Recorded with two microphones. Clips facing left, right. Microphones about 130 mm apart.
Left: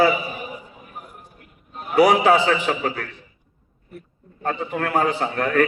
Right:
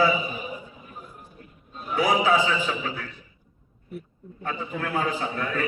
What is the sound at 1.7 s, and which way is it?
A man's voice, 80° left.